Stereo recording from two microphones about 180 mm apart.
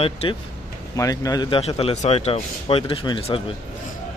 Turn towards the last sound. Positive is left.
turn(degrees=30)  # may be behind; listen again after turning